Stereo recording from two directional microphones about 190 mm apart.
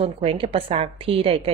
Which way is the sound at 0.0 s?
30° right (ahead or behind).